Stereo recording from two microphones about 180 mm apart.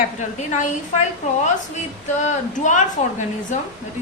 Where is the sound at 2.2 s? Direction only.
45° left (ahead or behind).